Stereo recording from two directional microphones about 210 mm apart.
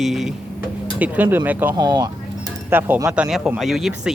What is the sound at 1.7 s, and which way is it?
Speech, 20° right (ahead or behind).